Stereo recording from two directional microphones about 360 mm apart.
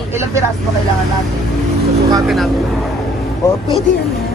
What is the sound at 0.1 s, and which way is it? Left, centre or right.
Speech, centre.